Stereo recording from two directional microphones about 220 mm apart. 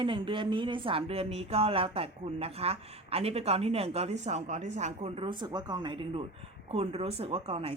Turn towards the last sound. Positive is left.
turn(degrees=-25)  # may be behind; listen again after turning